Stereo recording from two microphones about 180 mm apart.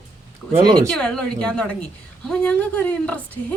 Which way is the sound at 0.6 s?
20° right (ahead or behind).